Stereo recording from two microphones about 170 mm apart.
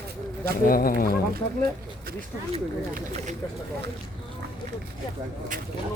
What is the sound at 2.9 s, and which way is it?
Speech, 45° right (ahead or behind).